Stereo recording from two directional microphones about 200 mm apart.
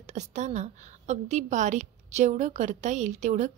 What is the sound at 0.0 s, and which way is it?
A woman's voice, 35° right (ahead or behind).